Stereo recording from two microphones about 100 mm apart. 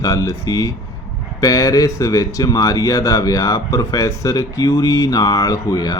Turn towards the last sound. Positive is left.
turn(degrees=40)  # may be behind; listen again after turning